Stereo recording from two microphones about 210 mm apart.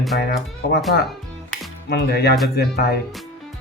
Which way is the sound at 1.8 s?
50° left (ahead or behind).